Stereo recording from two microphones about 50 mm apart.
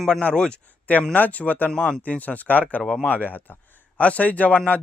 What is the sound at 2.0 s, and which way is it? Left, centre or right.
Speech, left.